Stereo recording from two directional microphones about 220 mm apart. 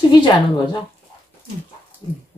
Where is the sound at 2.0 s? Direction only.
20° left (ahead or behind).